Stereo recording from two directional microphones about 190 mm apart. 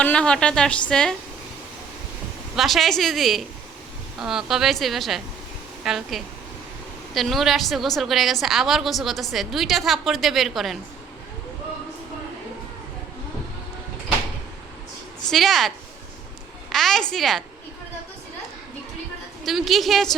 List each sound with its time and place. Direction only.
0.0 s a woman's voice: 5° left (ahead or behind)
2.6 s a woman's voice: centre (ahead or behind)
15.3 s a woman's voice: centre (ahead or behind)
16.7 s a woman's voice: centre (ahead or behind)
19.5 s a woman's voice: centre (ahead or behind)